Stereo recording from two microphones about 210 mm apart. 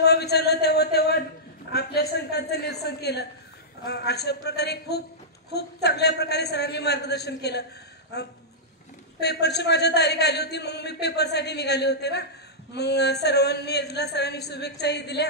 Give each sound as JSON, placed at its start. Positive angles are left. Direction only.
{"t": 0.0, "sound": "a man's voice", "side_deg": 50}
{"t": 1.7, "sound": "a sound", "side_deg": 50}
{"t": 3.8, "sound": "a man's voice", "side_deg": 50}
{"t": 9.2, "sound": "a man's voice", "side_deg": 50}